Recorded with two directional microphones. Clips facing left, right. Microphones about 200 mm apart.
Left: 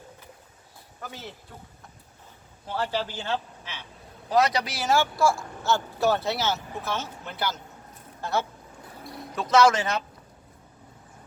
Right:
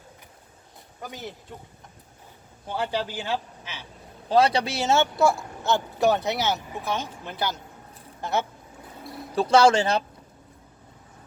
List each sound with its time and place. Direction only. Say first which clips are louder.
1.0 s speech: right 3 dB; 15° right (ahead or behind)
2.6 s speech: right 1 dB; 15° right (ahead or behind)
4.3 s speech: right 3 dB; 30° right (ahead or behind)
9.0 s a sound: right 2 dB; centre (ahead or behind)
9.3 s speech: right 2 dB; 30° right (ahead or behind)